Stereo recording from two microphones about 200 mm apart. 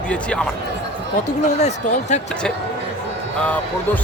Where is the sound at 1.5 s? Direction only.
35° left (ahead or behind).